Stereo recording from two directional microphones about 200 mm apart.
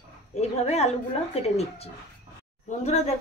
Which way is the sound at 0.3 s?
30° left (ahead or behind).